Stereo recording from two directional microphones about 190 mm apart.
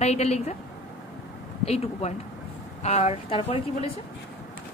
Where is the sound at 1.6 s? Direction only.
35° left (ahead or behind).